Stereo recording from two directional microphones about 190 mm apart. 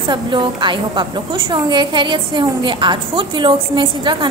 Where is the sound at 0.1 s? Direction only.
25° right (ahead or behind).